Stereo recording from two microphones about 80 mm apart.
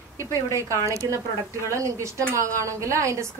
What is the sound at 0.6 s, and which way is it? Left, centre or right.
A woman's voice, right.